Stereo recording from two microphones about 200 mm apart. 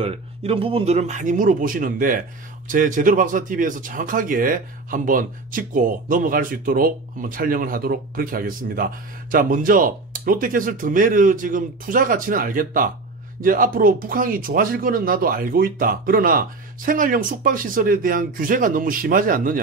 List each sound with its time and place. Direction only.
0.0 s speech: 30° right (ahead or behind); by 19.6 s 45° right (ahead or behind)